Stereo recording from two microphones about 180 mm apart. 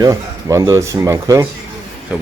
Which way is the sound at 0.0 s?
15° right (ahead or behind).